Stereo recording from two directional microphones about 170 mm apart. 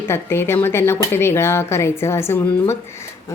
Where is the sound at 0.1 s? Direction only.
15° left (ahead or behind).